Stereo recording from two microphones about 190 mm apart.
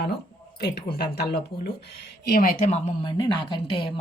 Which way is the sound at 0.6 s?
55° left (ahead or behind).